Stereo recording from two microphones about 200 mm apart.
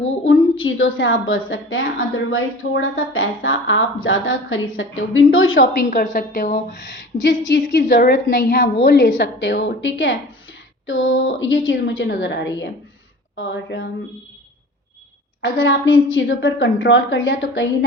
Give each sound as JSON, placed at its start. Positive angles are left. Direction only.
{"t": 0.3, "sound": "a woman's voice", "side_deg": 75}
{"t": 5.7, "sound": "a woman's voice", "side_deg": 45}
{"t": 15.4, "sound": "a woman's voice", "side_deg": 70}